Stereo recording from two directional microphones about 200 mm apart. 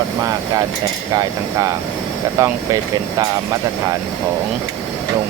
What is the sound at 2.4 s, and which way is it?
Speech, 15° right (ahead or behind).